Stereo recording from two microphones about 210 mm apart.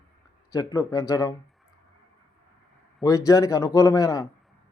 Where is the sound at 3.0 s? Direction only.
15° left (ahead or behind).